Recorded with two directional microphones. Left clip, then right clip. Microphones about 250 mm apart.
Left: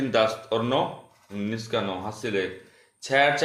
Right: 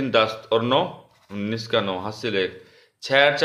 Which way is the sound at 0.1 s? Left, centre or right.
Centre.